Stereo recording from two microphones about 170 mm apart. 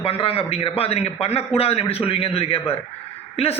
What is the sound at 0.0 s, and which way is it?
Speech, 35° left (ahead or behind).